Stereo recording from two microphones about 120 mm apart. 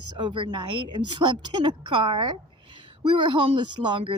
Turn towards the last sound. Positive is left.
turn(degrees=-45)  # may be behind; listen again after turning